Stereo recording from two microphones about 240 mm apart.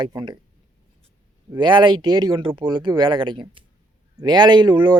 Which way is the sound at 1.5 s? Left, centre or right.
Centre.